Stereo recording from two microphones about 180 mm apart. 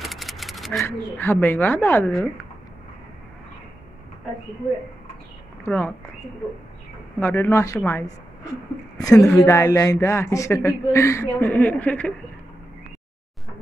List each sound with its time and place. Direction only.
0.0 s a sound: centre (ahead or behind)
0.8 s speech: 15° left (ahead or behind)
5.7 s speech: 10° left (ahead or behind)
7.2 s speech: 10° left (ahead or behind)
9.1 s speech: 5° left (ahead or behind)
9.4 s speech: 15° left (ahead or behind)